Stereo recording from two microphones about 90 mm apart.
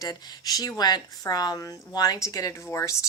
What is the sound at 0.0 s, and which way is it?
A child's voice, 45° left (ahead or behind).